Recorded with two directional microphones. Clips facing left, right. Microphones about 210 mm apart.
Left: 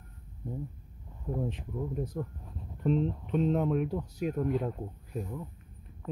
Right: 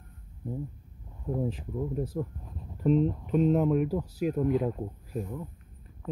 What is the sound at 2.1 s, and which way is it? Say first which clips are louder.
Speech: right 3 dB; 5° right (ahead or behind).